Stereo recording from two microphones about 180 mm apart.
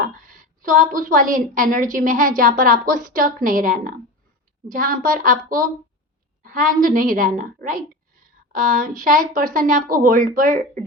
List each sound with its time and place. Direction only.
0.3 s a woman's voice: 50° right (ahead or behind)
6.4 s a sound: 50° right (ahead or behind)
6.8 s a woman's voice: 50° right (ahead or behind)